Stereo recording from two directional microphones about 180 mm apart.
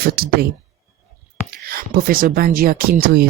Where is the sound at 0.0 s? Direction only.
60° right (ahead or behind).